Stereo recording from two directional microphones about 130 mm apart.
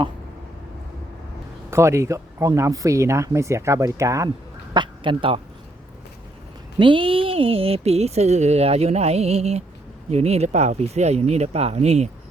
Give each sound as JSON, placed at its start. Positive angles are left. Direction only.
{"t": 1.7, "sound": "speech", "side_deg": -20}
{"t": 4.7, "sound": "a man's voice", "side_deg": -35}
{"t": 6.7, "sound": "speech", "side_deg": -40}